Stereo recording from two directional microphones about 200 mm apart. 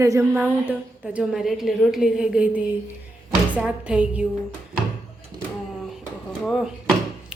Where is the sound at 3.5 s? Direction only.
Centre (ahead or behind).